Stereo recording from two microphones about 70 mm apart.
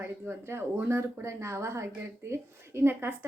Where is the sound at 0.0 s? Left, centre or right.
Right.